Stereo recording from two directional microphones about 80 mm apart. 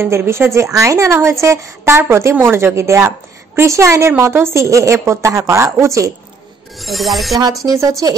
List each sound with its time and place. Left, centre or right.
0.0 s a woman's voice: right
6.8 s a sound: centre
7.6 s a woman's voice: right
8.0 s a woman's voice: right